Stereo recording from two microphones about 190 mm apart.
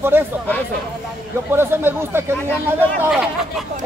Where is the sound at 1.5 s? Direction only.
10° right (ahead or behind).